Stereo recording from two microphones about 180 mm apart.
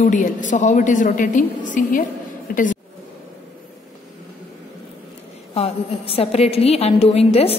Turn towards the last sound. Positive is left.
turn(degrees=35)  # may be behind; listen again after turning